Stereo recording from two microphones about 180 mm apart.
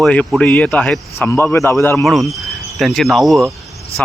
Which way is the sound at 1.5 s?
15° left (ahead or behind).